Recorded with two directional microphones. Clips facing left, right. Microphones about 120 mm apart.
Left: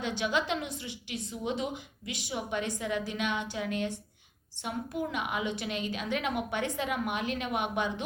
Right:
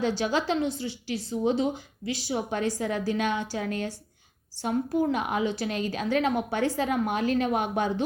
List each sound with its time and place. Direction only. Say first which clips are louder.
0.0 s a woman's voice: right 5 dB; 35° right (ahead or behind)